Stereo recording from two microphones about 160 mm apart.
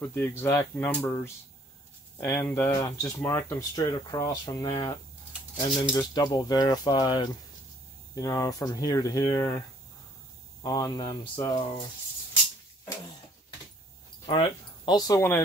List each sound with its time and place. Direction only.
0.0 s speech: 15° left (ahead or behind)
10.6 s speech: 25° left (ahead or behind)
14.9 s speech: 25° left (ahead or behind)